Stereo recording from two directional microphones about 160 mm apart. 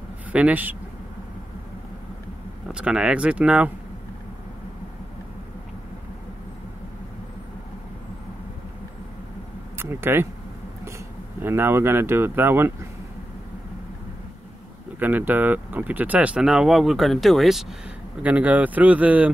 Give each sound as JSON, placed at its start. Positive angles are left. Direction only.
{"t": 0.3, "sound": "speech", "side_deg": -10}
{"t": 2.7, "sound": "speech", "side_deg": -5}
{"t": 9.8, "sound": "speech", "side_deg": -15}
{"t": 11.4, "sound": "speech", "side_deg": -15}
{"t": 15.0, "sound": "speech", "side_deg": -10}